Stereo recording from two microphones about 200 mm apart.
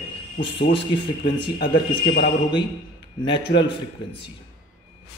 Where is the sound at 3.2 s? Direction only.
25° left (ahead or behind).